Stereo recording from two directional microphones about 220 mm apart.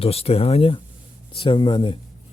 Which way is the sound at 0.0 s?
25° left (ahead or behind).